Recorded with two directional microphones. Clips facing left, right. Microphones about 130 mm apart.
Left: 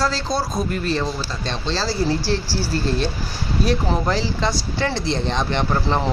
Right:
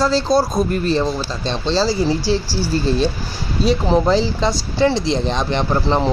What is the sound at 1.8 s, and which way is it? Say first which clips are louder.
Speech: right 4 dB; 15° right (ahead or behind).